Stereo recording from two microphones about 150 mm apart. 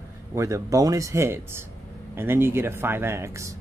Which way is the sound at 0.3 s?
20° right (ahead or behind).